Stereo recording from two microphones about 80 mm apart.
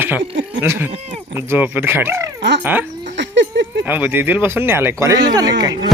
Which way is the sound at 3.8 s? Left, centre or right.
Right.